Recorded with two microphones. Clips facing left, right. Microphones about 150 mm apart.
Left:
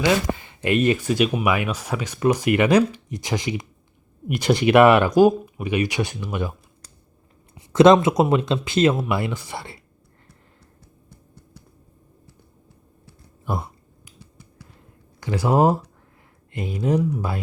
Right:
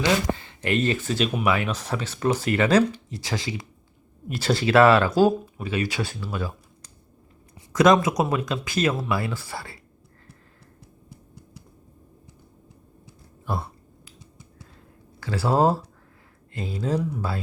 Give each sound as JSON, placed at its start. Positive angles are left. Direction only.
{"t": 0.0, "sound": "speech", "side_deg": 15}
{"t": 7.5, "sound": "speech", "side_deg": 30}
{"t": 13.4, "sound": "a sound", "side_deg": 15}
{"t": 15.2, "sound": "speech", "side_deg": 15}